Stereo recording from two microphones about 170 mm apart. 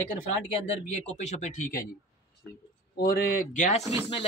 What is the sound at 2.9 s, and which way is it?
Speech, 60° left (ahead or behind).